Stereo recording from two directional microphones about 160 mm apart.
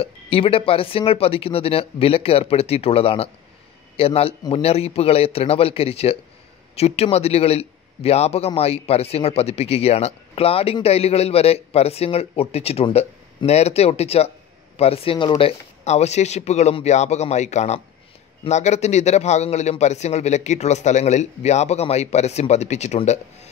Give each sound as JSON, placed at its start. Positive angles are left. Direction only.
{"t": 0.0, "sound": "a man's voice", "side_deg": 35}